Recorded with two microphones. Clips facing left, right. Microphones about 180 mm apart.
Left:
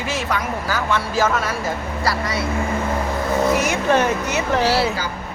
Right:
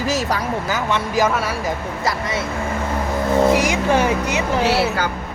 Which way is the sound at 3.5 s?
10° right (ahead or behind).